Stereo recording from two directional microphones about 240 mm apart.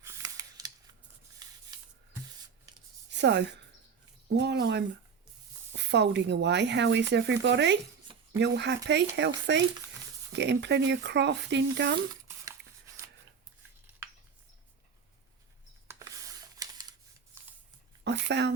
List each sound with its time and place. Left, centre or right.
0.0 s scissors: centre
1.4 s rub: centre
3.1 s speech: right
15.9 s a sound: centre
16.6 s camera: centre
17.3 s shuffling cards: centre
18.0 s a sound: right